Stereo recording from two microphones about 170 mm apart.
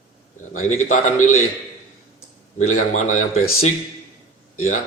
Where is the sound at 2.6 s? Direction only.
40° left (ahead or behind).